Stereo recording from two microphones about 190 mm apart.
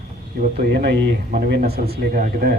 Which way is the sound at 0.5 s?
60° right (ahead or behind).